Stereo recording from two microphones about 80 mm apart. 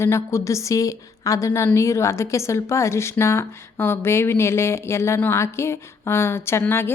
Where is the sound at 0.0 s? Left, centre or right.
Left.